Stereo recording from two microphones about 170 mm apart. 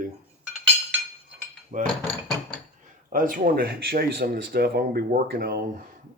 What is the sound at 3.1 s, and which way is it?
Speech, 50° right (ahead or behind).